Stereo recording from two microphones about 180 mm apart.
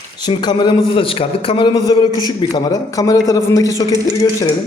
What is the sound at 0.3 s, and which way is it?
A man's voice, 25° left (ahead or behind).